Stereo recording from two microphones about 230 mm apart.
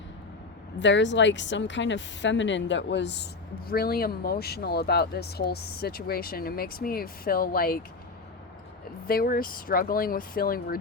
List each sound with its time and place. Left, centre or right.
0.8 s a woman's voice: left
9.0 s speech: left